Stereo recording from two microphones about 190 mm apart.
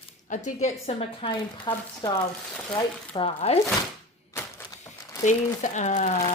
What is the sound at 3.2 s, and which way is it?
Speech, 30° left (ahead or behind).